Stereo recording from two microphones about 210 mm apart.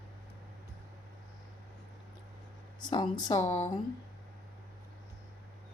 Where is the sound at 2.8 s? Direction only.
20° left (ahead or behind).